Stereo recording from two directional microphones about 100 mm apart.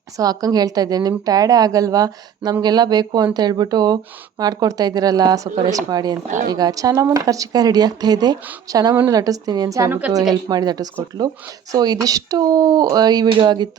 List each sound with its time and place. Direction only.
0.2 s speech: 40° right (ahead or behind)